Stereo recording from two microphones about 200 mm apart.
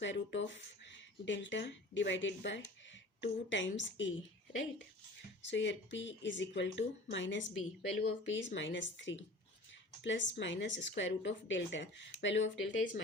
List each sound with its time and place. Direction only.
0.0 s speech: 65° left (ahead or behind)
5.4 s speech: 65° left (ahead or behind)